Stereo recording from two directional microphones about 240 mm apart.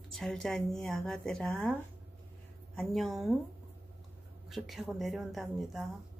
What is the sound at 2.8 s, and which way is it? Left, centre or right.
Speech, centre.